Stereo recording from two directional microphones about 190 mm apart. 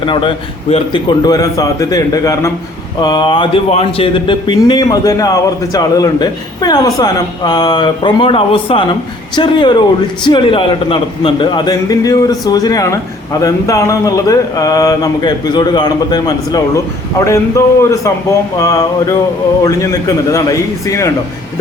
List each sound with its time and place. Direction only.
0.0 s a man's voice: 25° left (ahead or behind)